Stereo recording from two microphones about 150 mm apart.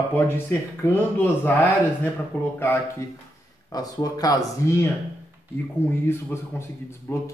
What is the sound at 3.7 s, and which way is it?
Speech, 25° left (ahead or behind).